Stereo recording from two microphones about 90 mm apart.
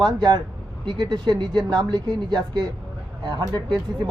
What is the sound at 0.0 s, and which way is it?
Speech, 50° right (ahead or behind).